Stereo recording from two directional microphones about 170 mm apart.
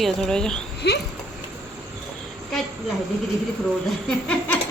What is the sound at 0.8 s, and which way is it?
Dog, 75° left (ahead or behind).